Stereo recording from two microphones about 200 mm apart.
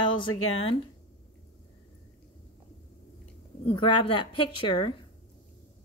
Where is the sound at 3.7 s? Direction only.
25° left (ahead or behind).